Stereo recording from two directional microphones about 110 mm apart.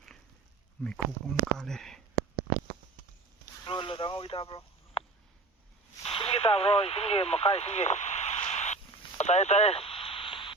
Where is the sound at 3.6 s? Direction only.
45° left (ahead or behind).